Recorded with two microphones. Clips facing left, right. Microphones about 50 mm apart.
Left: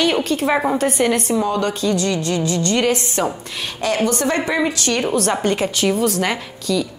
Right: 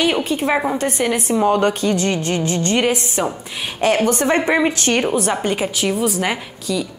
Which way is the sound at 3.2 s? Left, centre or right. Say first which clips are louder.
Even; centre.